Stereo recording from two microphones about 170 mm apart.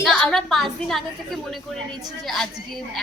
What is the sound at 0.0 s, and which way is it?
A woman's voice, centre (ahead or behind).